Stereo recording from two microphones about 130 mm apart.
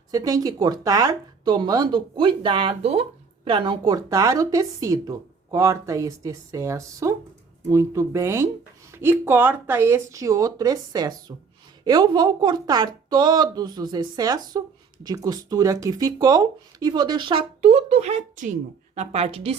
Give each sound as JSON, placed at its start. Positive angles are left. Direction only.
{"t": 0.1, "sound": "speech", "side_deg": -30}
{"t": 18.9, "sound": "a woman's voice", "side_deg": -55}